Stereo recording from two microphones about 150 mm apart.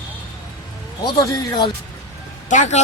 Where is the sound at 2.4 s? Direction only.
55° left (ahead or behind).